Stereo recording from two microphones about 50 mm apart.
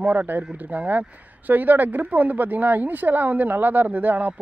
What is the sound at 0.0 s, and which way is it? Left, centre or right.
Speech, right.